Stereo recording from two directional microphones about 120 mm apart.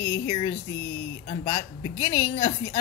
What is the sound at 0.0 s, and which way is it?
Speech, 30° left (ahead or behind).